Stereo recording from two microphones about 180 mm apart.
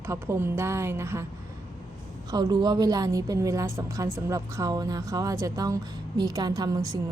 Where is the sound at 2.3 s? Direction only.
20° right (ahead or behind).